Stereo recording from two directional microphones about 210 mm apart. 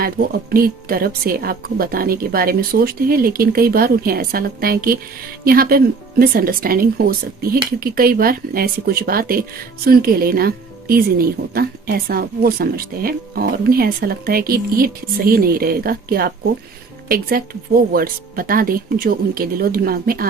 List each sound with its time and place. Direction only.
0.5 s speech: 45° right (ahead or behind)